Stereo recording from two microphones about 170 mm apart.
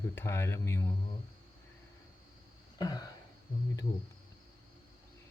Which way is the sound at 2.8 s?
25° left (ahead or behind).